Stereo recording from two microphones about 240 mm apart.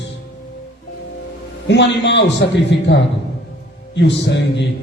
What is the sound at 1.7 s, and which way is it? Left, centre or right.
Speech, left.